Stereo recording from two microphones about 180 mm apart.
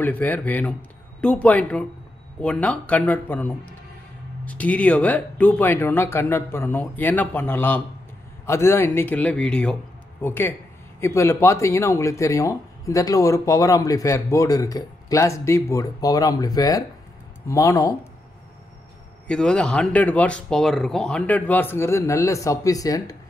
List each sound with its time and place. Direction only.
0.0 s speech: 10° left (ahead or behind)
19.2 s speech: 5° left (ahead or behind)